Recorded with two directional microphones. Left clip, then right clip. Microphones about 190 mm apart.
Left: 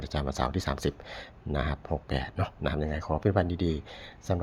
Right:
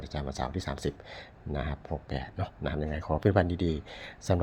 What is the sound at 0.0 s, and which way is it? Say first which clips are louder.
Speech: left 4 dB; 10° left (ahead or behind).